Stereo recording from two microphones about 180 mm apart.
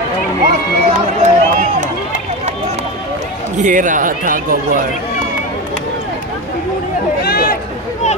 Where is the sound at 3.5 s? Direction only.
45° right (ahead or behind).